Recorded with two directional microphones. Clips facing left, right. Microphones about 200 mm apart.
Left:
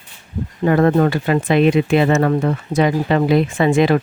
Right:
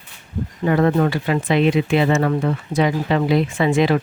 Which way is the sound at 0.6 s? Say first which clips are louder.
Left 3 dB; 50° left (ahead or behind).